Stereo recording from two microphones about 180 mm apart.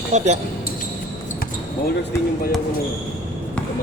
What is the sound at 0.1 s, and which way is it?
Speech, 40° right (ahead or behind).